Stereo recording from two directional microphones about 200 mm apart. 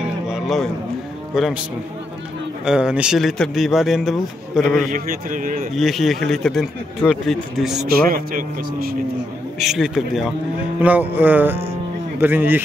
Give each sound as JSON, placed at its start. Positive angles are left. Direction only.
{"t": 0.3, "sound": "music", "side_deg": 0}
{"t": 1.3, "sound": "speech", "side_deg": 0}
{"t": 2.6, "sound": "a man's voice", "side_deg": -5}
{"t": 4.9, "sound": "speech", "side_deg": -45}
{"t": 5.8, "sound": "a man's voice", "side_deg": 0}
{"t": 8.1, "sound": "speech", "side_deg": -45}
{"t": 9.6, "sound": "a man's voice", "side_deg": 0}